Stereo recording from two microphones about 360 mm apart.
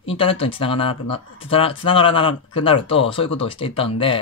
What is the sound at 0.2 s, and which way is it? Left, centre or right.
Speech, centre.